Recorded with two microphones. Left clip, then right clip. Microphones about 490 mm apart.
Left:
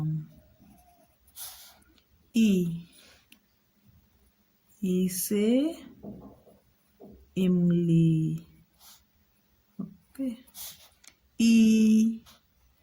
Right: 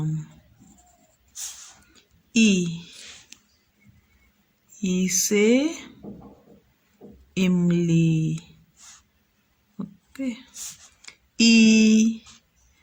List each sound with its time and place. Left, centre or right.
2.4 s speech: left
4.8 s speech: left
7.3 s speech: left
9.7 s a sound: left
11.3 s speech: left